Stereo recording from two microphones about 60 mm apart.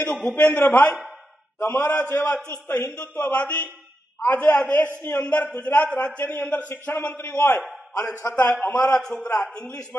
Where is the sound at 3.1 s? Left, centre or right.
Left.